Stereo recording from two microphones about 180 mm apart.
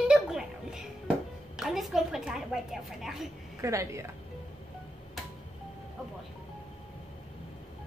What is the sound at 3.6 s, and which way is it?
Speech, 15° right (ahead or behind).